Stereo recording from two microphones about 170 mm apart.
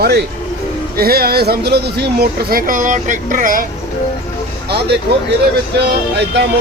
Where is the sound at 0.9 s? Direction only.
65° right (ahead or behind).